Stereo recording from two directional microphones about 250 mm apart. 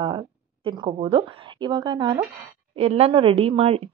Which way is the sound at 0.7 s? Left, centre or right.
Centre.